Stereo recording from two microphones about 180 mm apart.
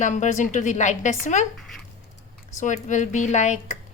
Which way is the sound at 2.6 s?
45° left (ahead or behind).